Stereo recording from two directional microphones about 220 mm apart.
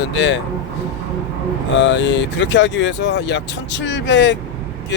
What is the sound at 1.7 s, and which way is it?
Speech, 55° left (ahead or behind).